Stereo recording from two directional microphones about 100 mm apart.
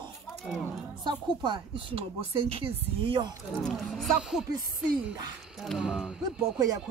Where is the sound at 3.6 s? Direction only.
Centre (ahead or behind).